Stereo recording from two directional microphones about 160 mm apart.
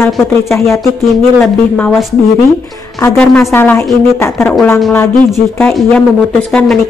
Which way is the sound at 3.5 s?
15° left (ahead or behind).